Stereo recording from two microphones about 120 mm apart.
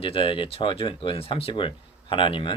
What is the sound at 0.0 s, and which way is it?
Speech, 45° left (ahead or behind).